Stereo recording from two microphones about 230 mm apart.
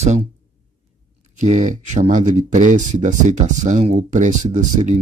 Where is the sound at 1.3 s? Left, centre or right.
Right.